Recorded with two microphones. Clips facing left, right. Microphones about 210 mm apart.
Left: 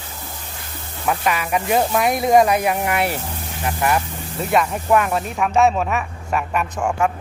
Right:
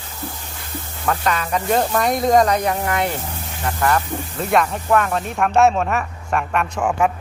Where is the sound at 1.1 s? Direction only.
10° left (ahead or behind).